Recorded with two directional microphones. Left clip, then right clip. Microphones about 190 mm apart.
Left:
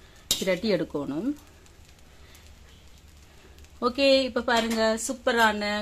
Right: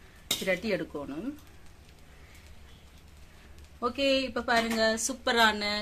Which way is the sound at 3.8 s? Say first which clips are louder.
Left 6 dB; 50° left (ahead or behind).